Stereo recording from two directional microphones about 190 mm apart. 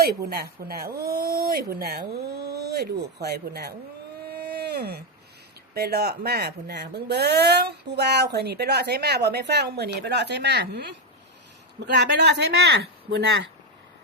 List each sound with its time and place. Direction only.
0.0 s speech: 55° right (ahead or behind)
4.3 s a sound: 55° right (ahead or behind)
5.7 s speech: 55° right (ahead or behind)